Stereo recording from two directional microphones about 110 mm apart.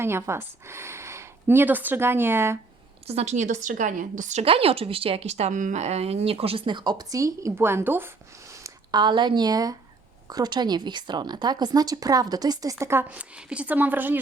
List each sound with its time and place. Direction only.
0.0 s speech: 25° right (ahead or behind)
3.1 s a woman's voice: 80° right; by 6.7 s 60° right (ahead or behind)
6.7 s speech: 40° right (ahead or behind)
9.0 s speech: 45° right (ahead or behind); by 14.2 s 15° right (ahead or behind)